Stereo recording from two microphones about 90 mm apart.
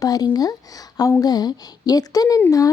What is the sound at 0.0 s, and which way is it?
Speech, 45° left (ahead or behind).